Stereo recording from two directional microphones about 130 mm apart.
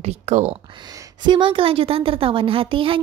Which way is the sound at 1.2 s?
40° right (ahead or behind).